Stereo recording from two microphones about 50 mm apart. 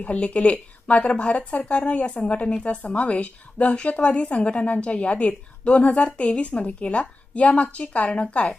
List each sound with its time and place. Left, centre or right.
0.0 s a woman's voice: left